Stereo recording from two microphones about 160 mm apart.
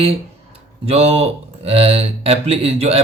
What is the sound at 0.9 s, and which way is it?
Speech, 40° right (ahead or behind).